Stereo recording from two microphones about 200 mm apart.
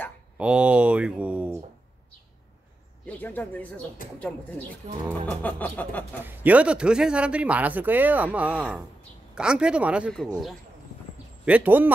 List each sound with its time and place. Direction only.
0.4 s speech: 5° right (ahead or behind)
3.1 s speech: 10° left (ahead or behind)
6.2 s a man's voice: 10° right (ahead or behind)
11.4 s a man's voice: 10° right (ahead or behind)